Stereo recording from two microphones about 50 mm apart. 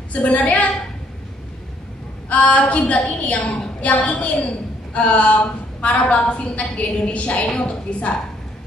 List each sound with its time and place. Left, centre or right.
0.1 s a woman's voice: left
2.2 s a woman's voice: left